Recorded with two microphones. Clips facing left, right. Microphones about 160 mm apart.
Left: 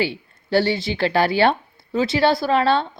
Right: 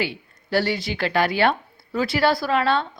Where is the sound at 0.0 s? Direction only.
30° left (ahead or behind).